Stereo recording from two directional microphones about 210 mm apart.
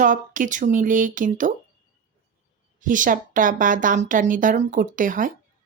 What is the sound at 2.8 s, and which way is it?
Speech, 40° right (ahead or behind).